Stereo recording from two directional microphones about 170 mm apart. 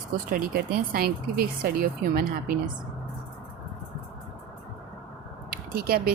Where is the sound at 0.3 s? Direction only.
60° right (ahead or behind).